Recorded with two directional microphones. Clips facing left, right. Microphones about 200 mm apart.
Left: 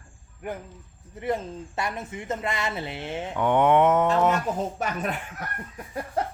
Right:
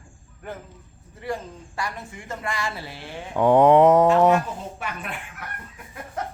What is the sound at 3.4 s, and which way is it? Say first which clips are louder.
Mantra: right 5 dB; 35° right (ahead or behind).